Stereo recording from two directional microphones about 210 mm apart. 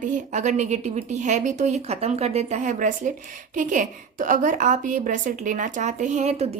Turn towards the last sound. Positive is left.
turn(degrees=-30)  # may be behind; listen again after turning